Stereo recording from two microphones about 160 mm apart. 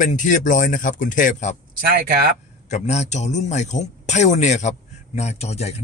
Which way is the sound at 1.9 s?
70° right (ahead or behind).